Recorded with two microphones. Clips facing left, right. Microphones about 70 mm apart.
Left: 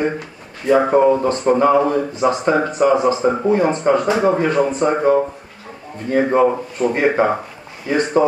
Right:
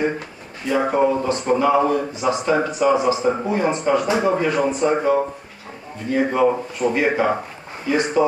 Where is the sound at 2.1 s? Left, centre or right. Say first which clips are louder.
Left 3 dB; left.